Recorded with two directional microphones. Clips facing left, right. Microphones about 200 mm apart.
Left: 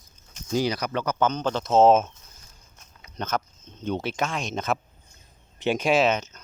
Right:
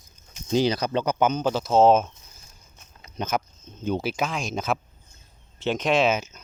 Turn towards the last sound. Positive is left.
turn(degrees=0)  # may be behind; listen again after turning